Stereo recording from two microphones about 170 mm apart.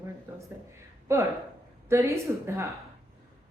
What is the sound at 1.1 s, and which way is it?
Speech, 15° right (ahead or behind).